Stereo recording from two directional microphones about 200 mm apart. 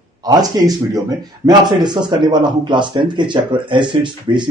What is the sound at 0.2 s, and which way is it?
Speech, 20° right (ahead or behind).